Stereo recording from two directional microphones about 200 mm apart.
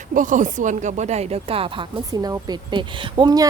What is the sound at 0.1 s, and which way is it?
Speech, 40° right (ahead or behind).